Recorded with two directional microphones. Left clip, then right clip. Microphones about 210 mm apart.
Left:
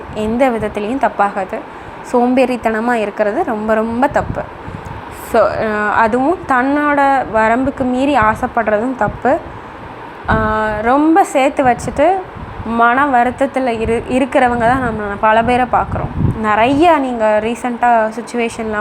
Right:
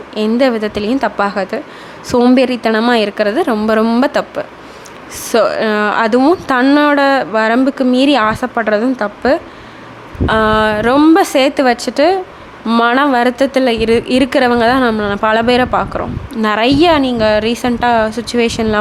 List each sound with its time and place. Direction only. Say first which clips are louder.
0.2 s a woman's voice: right 1 dB; 30° right (ahead or behind)
3.8 s speech: right 2 dB; 50° right (ahead or behind)
4.1 s a woman's voice: right 1 dB; 35° right (ahead or behind)
5.3 s speech: right 1 dB; 25° right (ahead or behind)
6.1 s a woman's voice: right 2 dB; 35° right (ahead or behind)
13.5 s speech: right 4 dB; 25° right (ahead or behind)
14.2 s a woman's voice: left 2 dB; 35° right (ahead or behind)